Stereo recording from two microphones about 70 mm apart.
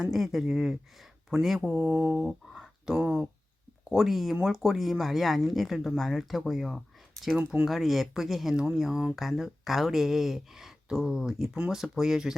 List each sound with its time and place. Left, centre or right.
0.0 s speech: centre
1.6 s speech: right
2.2 s a sound: centre
3.0 s speech: centre
3.9 s speech: centre
7.3 s speech: centre
7.7 s speech: centre
11.5 s speech: centre
11.8 s speech: centre